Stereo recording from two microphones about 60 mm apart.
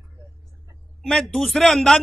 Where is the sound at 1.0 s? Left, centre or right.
Centre.